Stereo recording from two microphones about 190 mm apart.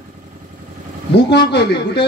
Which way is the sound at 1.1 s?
60° left (ahead or behind).